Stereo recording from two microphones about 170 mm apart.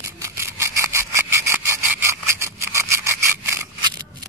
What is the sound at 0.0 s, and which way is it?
Sawing, 15° right (ahead or behind).